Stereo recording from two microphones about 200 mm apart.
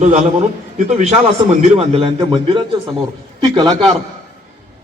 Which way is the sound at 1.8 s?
30° right (ahead or behind).